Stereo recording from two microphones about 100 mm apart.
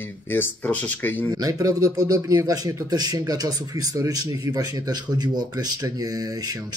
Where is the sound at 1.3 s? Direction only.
35° right (ahead or behind).